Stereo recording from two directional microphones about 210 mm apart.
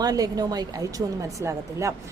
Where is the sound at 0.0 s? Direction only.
20° right (ahead or behind).